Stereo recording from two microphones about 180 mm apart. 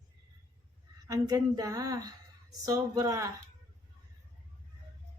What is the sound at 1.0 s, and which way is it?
A woman's voice, 20° right (ahead or behind).